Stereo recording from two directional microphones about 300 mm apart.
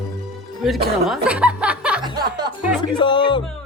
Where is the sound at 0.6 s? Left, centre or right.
Centre.